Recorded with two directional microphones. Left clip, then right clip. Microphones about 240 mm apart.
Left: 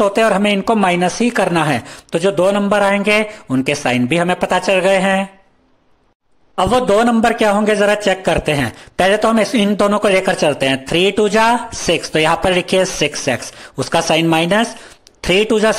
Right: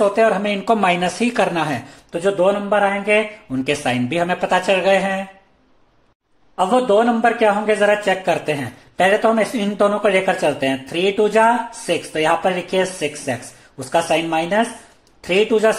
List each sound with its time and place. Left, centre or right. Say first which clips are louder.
0.0 s a man's voice: left 2 dB; left
6.5 s a man's voice: left 2 dB; left